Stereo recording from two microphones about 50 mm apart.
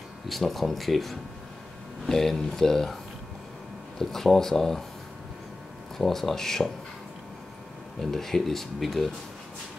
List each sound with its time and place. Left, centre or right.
0.3 s speech: centre
4.0 s speech: centre
5.9 s speech: centre
8.0 s speech: centre